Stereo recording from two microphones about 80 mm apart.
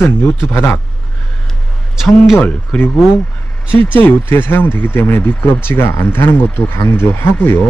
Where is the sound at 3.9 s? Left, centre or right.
Left.